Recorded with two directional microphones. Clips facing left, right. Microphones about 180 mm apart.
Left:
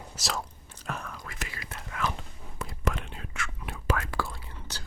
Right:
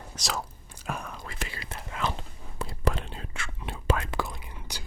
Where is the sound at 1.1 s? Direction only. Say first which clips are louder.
Right 2 dB; 30° right (ahead or behind).